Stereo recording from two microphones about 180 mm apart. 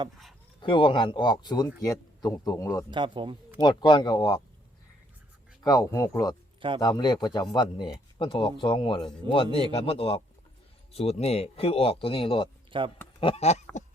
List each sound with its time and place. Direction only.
0.6 s speech: 25° left (ahead or behind)
2.9 s speech: 25° right (ahead or behind)
3.6 s speech: 25° left (ahead or behind)
5.6 s speech: 20° left (ahead or behind)
12.7 s speech: 30° right (ahead or behind)
13.1 s a sound: 30° left (ahead or behind)